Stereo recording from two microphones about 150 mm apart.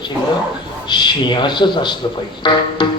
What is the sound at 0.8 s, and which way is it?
Speech, 30° left (ahead or behind).